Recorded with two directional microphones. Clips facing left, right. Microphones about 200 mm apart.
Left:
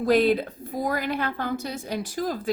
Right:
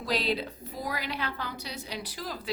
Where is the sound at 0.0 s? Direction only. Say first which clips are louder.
Left 10 dB; 50° left (ahead or behind).